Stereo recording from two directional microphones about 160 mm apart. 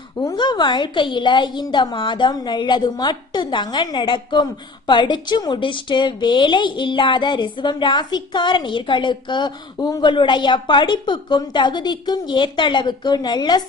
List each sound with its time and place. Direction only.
0.2 s a woman's voice: 30° left (ahead or behind)